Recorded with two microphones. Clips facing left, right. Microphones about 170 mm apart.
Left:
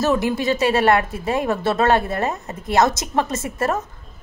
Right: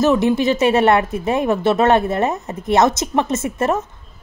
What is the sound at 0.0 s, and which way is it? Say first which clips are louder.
A woman's voice: right 4 dB; 20° right (ahead or behind).